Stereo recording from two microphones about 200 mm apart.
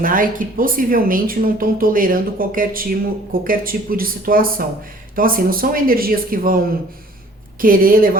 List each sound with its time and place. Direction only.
0.0 s speech: 45° right (ahead or behind)
7.6 s speech: 45° right (ahead or behind)